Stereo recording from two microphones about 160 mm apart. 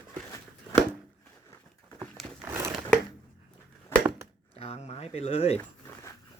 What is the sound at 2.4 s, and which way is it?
Crumpling, 15° right (ahead or behind).